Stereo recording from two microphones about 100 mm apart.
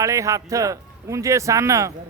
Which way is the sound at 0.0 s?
30° right (ahead or behind).